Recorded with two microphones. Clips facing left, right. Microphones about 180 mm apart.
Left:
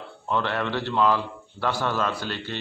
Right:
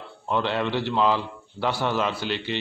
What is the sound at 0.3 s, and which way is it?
A man's voice, 15° right (ahead or behind).